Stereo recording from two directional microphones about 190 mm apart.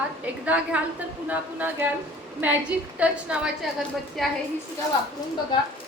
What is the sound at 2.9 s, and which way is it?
A woman's voice, 5° right (ahead or behind).